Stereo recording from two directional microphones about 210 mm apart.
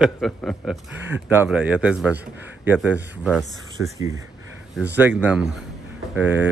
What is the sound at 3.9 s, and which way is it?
Speech, 15° right (ahead or behind).